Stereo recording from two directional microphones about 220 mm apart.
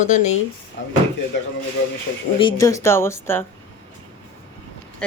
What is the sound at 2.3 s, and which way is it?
A woman's voice, 20° left (ahead or behind).